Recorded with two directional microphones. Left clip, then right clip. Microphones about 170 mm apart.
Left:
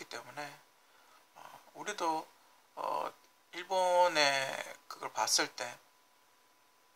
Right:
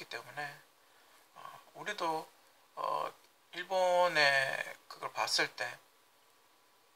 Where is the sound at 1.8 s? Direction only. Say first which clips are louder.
Left 1 dB; 20° left (ahead or behind).